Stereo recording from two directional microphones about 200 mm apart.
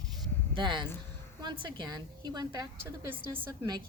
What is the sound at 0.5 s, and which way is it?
A woman's voice, 25° right (ahead or behind).